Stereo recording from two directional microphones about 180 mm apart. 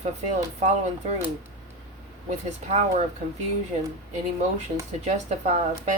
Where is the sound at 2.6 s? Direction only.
40° right (ahead or behind).